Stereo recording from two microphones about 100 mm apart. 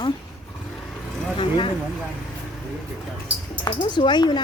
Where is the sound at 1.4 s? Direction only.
55° left (ahead or behind).